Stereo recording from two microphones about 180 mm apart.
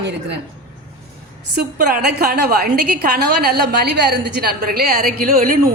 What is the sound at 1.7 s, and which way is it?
A woman's voice, 55° right (ahead or behind).